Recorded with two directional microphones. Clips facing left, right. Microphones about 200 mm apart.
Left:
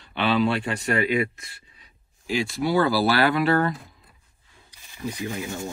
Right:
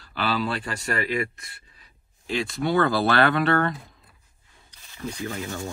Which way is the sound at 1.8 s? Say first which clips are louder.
Left 1 dB; 5° left (ahead or behind).